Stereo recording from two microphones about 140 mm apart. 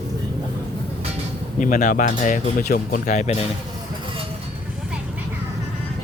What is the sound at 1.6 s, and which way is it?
Speech, 70° left (ahead or behind).